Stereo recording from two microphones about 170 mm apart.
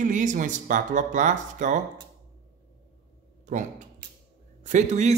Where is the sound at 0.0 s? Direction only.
50° right (ahead or behind).